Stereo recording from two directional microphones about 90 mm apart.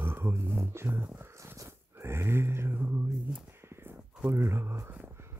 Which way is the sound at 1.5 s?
30° right (ahead or behind).